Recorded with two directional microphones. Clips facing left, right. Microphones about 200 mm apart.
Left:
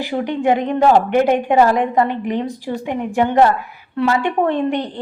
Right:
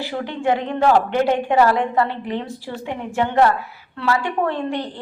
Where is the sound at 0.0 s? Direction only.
15° left (ahead or behind).